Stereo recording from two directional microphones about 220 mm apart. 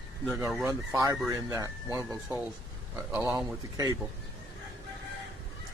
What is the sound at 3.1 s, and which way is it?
Speech, 5° right (ahead or behind).